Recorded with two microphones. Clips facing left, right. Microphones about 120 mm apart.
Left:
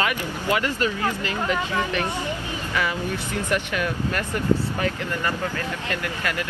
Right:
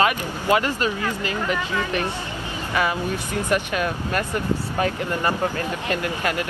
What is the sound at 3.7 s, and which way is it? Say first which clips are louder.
Speech: right 2 dB; 25° right (ahead or behind).